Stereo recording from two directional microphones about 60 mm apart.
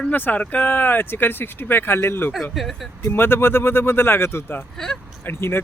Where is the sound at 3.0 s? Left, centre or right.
Left.